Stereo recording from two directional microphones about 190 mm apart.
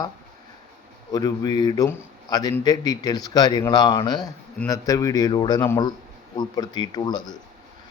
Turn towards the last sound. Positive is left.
turn(degrees=20)  # may be behind; listen again after turning